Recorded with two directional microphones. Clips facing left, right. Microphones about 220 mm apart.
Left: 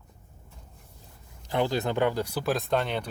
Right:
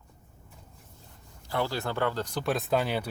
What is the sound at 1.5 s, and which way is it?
Speech, 20° left (ahead or behind).